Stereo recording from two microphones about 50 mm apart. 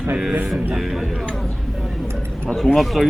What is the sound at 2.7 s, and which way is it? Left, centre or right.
Speech, centre.